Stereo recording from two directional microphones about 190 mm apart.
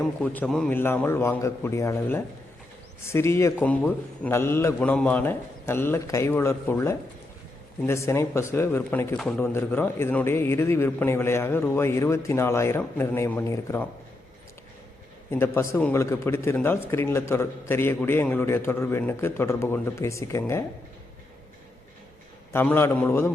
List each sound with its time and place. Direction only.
0.2 s a man's voice: 5° left (ahead or behind)
15.3 s a man's voice: 10° left (ahead or behind)
22.5 s a man's voice: 10° left (ahead or behind)